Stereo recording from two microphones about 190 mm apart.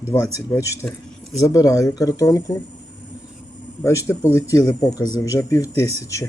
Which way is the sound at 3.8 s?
15° left (ahead or behind).